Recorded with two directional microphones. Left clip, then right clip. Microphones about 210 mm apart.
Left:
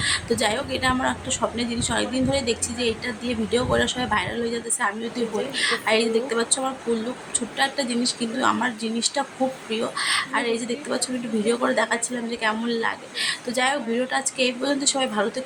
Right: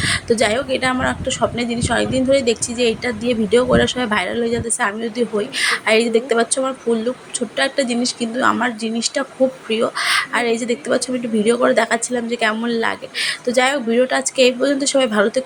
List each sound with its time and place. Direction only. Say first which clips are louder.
0.0 s a woman's voice: right 6 dB; 15° right (ahead or behind)